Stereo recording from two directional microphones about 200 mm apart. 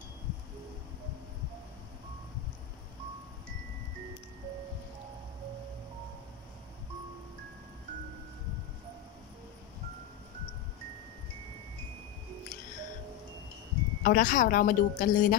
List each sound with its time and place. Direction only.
14.0 s a woman's voice: 45° left (ahead or behind)